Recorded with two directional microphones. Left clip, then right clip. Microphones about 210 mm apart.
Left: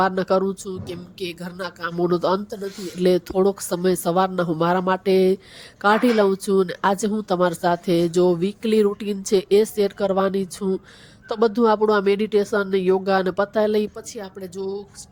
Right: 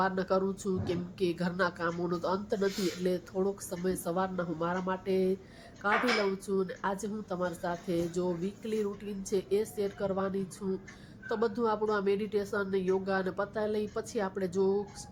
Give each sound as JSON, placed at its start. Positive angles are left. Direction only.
{"t": 0.0, "sound": "speech", "side_deg": 40}
{"t": 1.4, "sound": "speech", "side_deg": 0}
{"t": 1.6, "sound": "speech", "side_deg": 40}
{"t": 6.4, "sound": "speech", "side_deg": 45}
{"t": 14.2, "sound": "speech", "side_deg": 0}
{"t": 14.5, "sound": "speech", "side_deg": 40}